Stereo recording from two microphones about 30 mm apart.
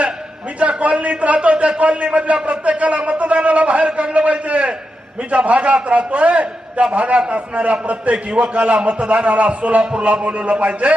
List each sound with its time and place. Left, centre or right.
0.8 s a man's voice: right
3.9 s a sound: right
5.5 s a man's voice: right
9.8 s a man's voice: right
10.2 s a man's voice: right